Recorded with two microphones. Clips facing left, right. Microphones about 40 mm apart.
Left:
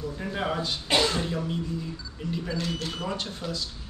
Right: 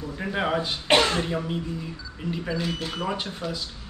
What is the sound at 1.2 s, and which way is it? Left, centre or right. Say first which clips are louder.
Speech: right 2 dB; right.